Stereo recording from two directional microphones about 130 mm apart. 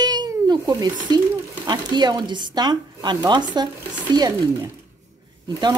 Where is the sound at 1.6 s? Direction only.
35° right (ahead or behind).